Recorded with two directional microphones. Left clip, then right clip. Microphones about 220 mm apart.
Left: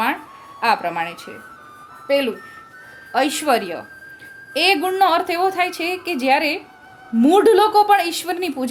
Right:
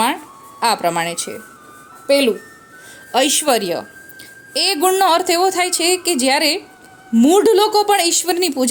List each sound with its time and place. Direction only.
0.6 s a woman's voice: 35° right (ahead or behind)